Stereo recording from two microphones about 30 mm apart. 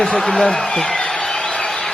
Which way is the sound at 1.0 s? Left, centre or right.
Left.